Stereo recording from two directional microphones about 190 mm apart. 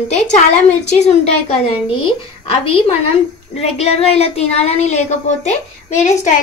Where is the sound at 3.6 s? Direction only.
35° left (ahead or behind).